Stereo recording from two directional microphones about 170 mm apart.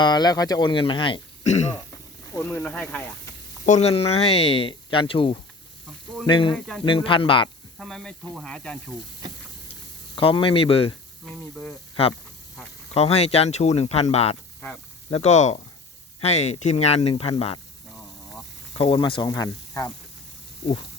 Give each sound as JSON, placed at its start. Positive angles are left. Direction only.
{"t": 0.0, "sound": "speech", "side_deg": 25}
{"t": 2.3, "sound": "speech", "side_deg": 10}
{"t": 3.7, "sound": "speech", "side_deg": 40}
{"t": 7.8, "sound": "snake", "side_deg": 0}
{"t": 10.2, "sound": "speech", "side_deg": 30}
{"t": 11.3, "sound": "speech", "side_deg": 5}
{"t": 12.9, "sound": "speech", "side_deg": 40}
{"t": 17.9, "sound": "a sound", "side_deg": 0}
{"t": 18.8, "sound": "speech", "side_deg": 30}